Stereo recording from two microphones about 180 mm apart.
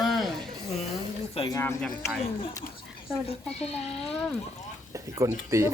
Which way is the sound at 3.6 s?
35° left (ahead or behind).